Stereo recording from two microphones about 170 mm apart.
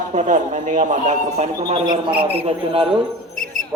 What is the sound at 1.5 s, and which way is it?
Speech, 30° right (ahead or behind).